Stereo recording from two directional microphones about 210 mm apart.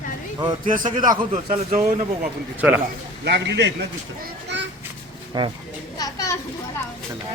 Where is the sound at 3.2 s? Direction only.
55° right (ahead or behind).